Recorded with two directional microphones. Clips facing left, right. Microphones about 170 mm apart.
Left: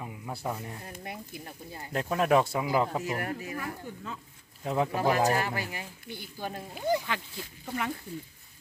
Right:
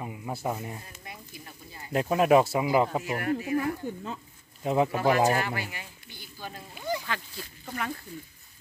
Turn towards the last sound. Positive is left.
turn(degrees=15)  # may be behind; listen again after turning